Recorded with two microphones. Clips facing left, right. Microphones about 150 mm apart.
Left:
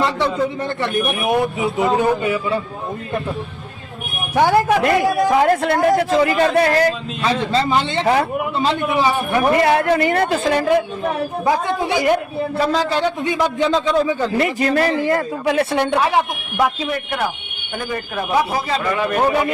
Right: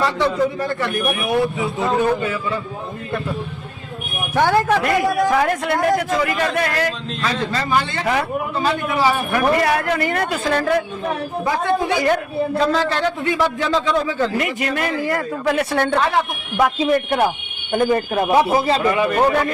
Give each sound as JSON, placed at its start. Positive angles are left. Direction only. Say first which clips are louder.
{"t": 0.0, "sound": "a man's voice", "louder": "even", "side_deg": 25}
{"t": 4.4, "sound": "a man's voice", "louder": "left 2 dB", "side_deg": 15}
{"t": 14.3, "sound": "a man's voice", "louder": "left 5 dB", "side_deg": 30}
{"t": 17.7, "sound": "speech", "louder": "right 7 dB", "side_deg": -35}